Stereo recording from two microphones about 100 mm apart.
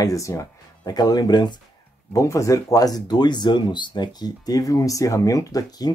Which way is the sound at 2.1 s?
30° left (ahead or behind).